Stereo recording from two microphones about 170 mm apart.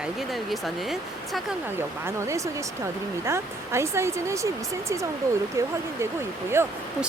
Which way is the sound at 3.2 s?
15° right (ahead or behind).